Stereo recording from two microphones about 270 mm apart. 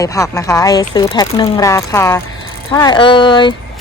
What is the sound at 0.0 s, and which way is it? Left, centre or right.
Speech, centre.